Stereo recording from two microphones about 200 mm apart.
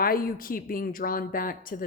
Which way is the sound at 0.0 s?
45° left (ahead or behind).